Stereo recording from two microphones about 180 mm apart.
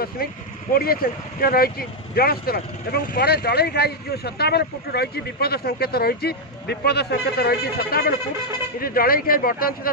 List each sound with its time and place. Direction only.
0.2 s speech: 55° left (ahead or behind)